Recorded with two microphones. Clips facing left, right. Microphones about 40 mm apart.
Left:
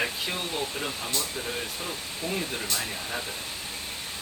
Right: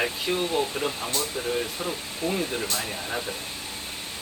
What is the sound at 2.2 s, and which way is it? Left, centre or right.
Speech, right.